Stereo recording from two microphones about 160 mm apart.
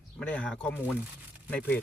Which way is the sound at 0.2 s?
5° left (ahead or behind).